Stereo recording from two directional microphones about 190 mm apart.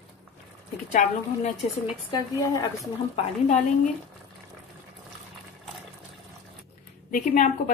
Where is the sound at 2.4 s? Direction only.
15° left (ahead or behind).